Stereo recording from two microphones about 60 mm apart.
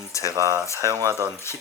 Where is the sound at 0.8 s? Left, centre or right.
Right.